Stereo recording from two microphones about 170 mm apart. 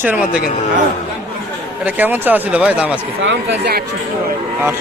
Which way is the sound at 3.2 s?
85° right.